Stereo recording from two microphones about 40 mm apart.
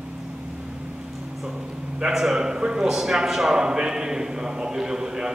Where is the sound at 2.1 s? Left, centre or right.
Centre.